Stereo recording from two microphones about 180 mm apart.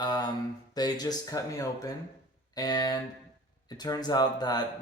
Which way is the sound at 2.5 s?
20° left (ahead or behind).